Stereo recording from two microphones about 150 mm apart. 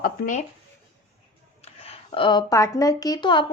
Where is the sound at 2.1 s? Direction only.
30° left (ahead or behind).